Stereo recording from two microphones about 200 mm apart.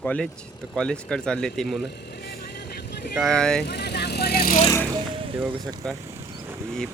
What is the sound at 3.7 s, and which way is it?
Speech, 55° left (ahead or behind).